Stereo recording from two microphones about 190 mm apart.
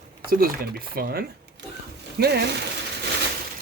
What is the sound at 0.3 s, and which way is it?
Speech, 50° right (ahead or behind).